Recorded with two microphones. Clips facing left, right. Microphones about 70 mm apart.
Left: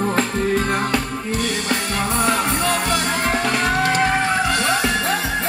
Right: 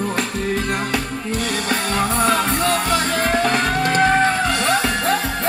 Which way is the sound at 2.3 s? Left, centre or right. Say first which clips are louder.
Right 1 dB; left.